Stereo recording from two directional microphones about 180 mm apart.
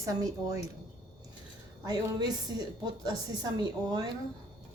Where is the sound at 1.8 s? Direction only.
20° right (ahead or behind).